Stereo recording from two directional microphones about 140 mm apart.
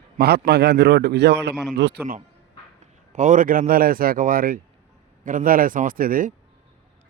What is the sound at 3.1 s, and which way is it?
Speech, 65° right (ahead or behind).